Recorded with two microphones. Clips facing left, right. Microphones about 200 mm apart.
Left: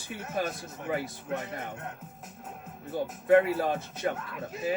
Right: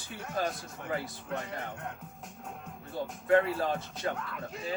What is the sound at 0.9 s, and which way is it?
Speech, 20° left (ahead or behind).